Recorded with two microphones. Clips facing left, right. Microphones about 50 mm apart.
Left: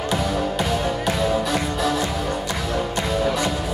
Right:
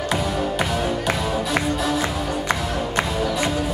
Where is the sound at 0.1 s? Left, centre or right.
Centre.